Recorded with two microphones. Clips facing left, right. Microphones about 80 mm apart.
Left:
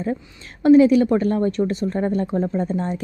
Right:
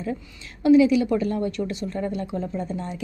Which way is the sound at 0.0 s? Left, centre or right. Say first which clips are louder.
Left 5 dB; left.